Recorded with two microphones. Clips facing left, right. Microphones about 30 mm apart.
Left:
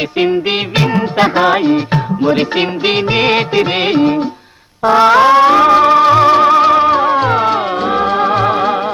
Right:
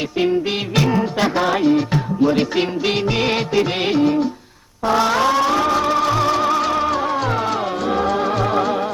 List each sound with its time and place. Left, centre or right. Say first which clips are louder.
0.8 s music: left 4 dB; left